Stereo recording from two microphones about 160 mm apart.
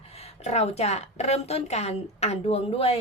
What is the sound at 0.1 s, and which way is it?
A woman's voice, 40° left (ahead or behind).